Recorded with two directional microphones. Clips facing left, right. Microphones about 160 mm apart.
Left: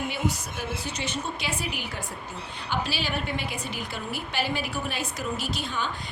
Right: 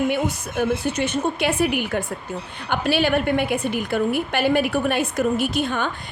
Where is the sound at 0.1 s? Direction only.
55° right (ahead or behind).